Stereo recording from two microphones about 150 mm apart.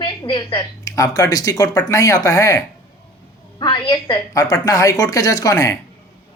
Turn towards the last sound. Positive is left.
turn(degrees=20)  # may be behind; listen again after turning